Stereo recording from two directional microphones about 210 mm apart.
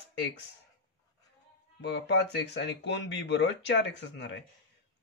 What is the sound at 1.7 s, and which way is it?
A man's voice, 55° left (ahead or behind).